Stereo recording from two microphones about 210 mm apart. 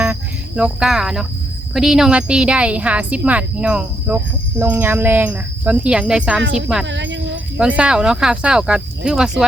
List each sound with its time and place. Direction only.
0.0 s music: 5° right (ahead or behind)
1.7 s a woman's voice: centre (ahead or behind)
6.8 s speech: 60° right (ahead or behind)
7.8 s a woman's voice: 5° right (ahead or behind)